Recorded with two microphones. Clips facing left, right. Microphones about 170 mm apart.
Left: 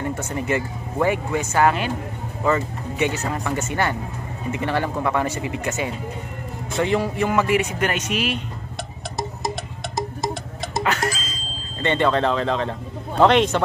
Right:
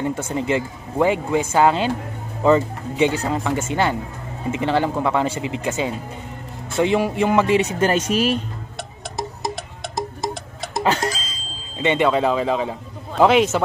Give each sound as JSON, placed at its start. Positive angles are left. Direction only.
{"t": 0.0, "sound": "speech", "side_deg": -10}
{"t": 6.8, "sound": "speech", "side_deg": -20}
{"t": 9.9, "sound": "music", "side_deg": 0}
{"t": 10.8, "sound": "music", "side_deg": -30}
{"t": 11.8, "sound": "speech", "side_deg": -10}